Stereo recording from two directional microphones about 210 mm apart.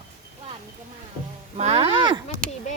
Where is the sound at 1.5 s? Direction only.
30° right (ahead or behind).